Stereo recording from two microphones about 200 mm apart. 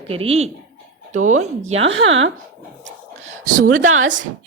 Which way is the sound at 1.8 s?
75° right (ahead or behind).